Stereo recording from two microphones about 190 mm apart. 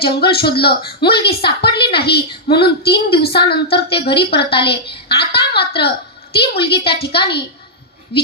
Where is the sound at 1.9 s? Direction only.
60° left (ahead or behind).